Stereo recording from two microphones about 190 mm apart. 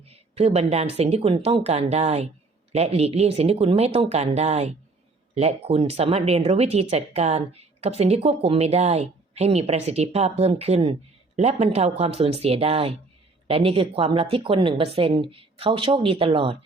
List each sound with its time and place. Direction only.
0.1 s speech: 35° right (ahead or behind)